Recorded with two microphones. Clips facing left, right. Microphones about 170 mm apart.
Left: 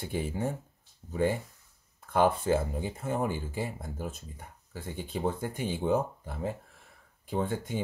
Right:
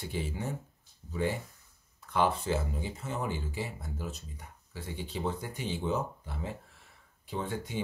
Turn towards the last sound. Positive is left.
turn(degrees=50)  # may be behind; listen again after turning